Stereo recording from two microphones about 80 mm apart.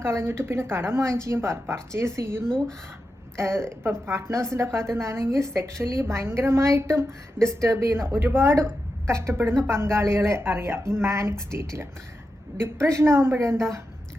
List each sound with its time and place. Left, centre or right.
0.0 s a woman's voice: right